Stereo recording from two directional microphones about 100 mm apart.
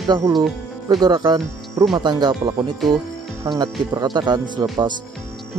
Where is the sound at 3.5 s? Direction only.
45° right (ahead or behind).